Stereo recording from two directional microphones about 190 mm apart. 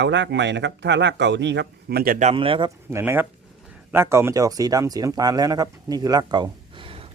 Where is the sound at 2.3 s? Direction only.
25° right (ahead or behind).